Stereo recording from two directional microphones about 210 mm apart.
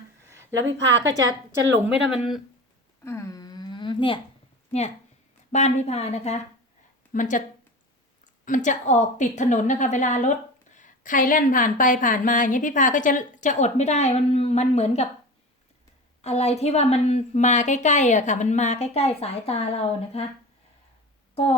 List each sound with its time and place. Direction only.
0.7 s a woman's voice: 60° right (ahead or behind)
1.7 s speech: 5° right (ahead or behind)
3.0 s a sound: 10° left (ahead or behind)
5.5 s a woman's voice: 35° left (ahead or behind)
16.2 s a woman's voice: 30° left (ahead or behind)